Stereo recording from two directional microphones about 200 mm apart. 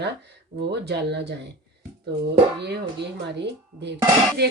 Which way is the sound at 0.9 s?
60° right (ahead or behind).